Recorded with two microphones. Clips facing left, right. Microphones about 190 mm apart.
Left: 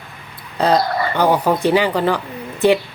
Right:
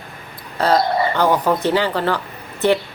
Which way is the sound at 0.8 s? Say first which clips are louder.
Right 1 dB; 20° right (ahead or behind).